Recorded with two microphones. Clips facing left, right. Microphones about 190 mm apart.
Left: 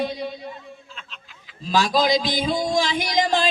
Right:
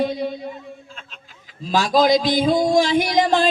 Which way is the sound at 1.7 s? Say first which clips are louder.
Right 3 dB; 50° right (ahead or behind).